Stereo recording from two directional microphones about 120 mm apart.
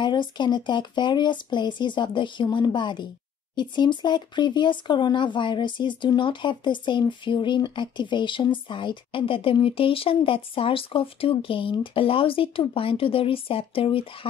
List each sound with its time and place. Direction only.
0.0 s speech: 40° left (ahead or behind)